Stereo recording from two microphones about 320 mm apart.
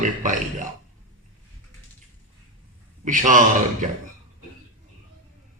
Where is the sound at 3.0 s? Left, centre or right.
Right.